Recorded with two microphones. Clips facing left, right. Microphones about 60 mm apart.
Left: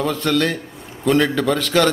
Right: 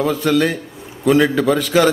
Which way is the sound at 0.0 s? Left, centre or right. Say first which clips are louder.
Right 3 dB; centre.